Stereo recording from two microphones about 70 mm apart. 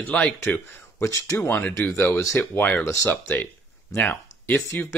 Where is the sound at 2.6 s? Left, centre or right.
Left.